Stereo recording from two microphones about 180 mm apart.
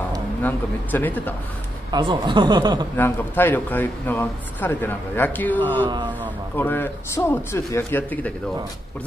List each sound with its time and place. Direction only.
0.4 s speech: 10° left (ahead or behind)
1.9 s speech: 25° right (ahead or behind)
3.0 s speech: 10° left (ahead or behind)
5.9 s speech: 25° right (ahead or behind)
6.5 s speech: 10° left (ahead or behind)